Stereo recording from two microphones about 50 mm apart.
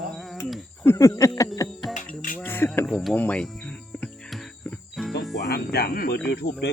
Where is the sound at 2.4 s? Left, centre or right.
Left.